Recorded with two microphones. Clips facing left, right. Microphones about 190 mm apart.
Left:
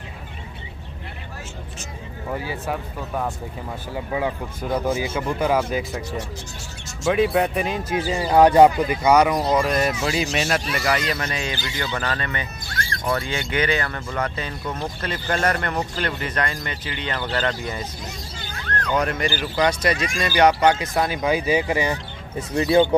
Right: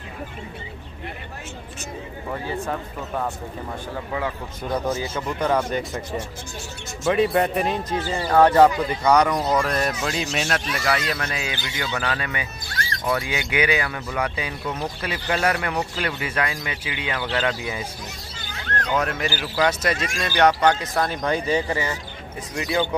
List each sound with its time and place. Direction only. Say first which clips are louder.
2.4 s speech: even; 5° left (ahead or behind)
7.1 s speech: even; centre (ahead or behind)
8.1 s speech: left 2 dB; 15° left (ahead or behind); by 17.8 s 5° right (ahead or behind)
18.9 s speech: left 2 dB; centre (ahead or behind)
20.2 s speech: left 1 dB; 5° left (ahead or behind)
22.5 s speech: left 7 dB; 30° left (ahead or behind)